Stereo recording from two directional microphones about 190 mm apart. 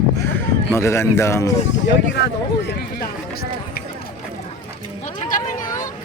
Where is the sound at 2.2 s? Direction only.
60° left (ahead or behind).